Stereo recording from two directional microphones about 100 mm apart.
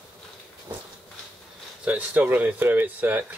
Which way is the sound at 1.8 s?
15° right (ahead or behind).